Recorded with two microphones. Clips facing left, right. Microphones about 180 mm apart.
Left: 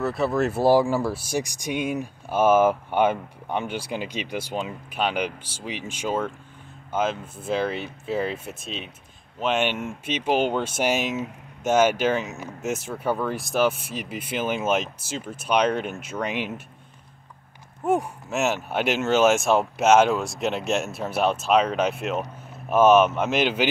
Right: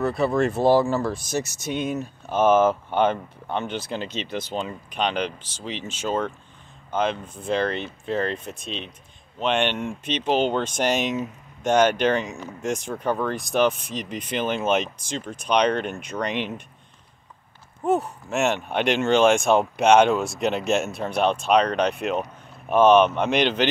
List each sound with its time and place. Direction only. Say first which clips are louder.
0.0 s speech: right 2 dB; centre (ahead or behind)
17.8 s speech: right 1 dB; 10° left (ahead or behind)